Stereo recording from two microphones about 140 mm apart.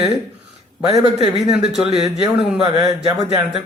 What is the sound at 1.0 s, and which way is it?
A man's voice, 5° right (ahead or behind).